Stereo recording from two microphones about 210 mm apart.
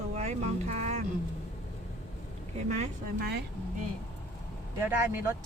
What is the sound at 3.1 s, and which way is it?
Speech, 50° right (ahead or behind).